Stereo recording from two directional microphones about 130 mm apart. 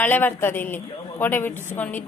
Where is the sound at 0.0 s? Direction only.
15° left (ahead or behind).